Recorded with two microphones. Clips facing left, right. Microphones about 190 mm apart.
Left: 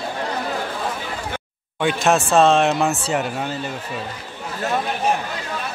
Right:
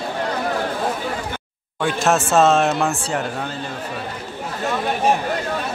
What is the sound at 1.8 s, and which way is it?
Speech, centre (ahead or behind).